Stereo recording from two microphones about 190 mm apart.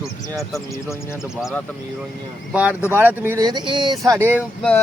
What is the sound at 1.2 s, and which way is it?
Speech, centre (ahead or behind).